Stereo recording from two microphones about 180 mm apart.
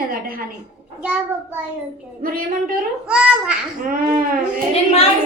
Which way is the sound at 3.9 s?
55° right (ahead or behind).